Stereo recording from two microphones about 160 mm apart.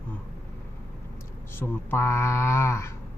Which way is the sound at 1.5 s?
15° left (ahead or behind).